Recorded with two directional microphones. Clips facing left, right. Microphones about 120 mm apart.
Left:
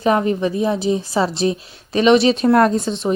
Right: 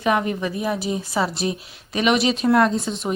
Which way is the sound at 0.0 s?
30° left (ahead or behind).